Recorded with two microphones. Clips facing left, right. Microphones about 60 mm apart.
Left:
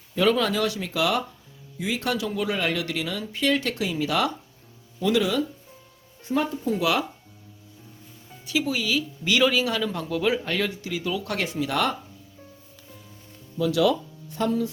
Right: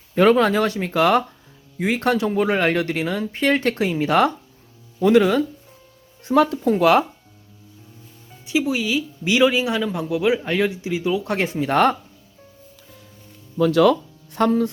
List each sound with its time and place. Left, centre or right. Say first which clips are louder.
0.1 s speech: right 7 dB; right
6.2 s speech: right 8 dB; right
6.7 s speech: right 7 dB; right
8.6 s speech: right 4 dB; centre; by 11.9 s right
13.6 s speech: right 6 dB; right